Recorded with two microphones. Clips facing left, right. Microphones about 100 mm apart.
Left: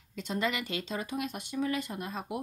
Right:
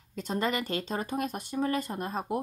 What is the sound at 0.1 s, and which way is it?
Speech, 40° right (ahead or behind).